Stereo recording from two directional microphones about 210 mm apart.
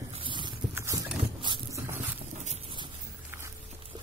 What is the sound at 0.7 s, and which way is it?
Clip-clop, 15° right (ahead or behind).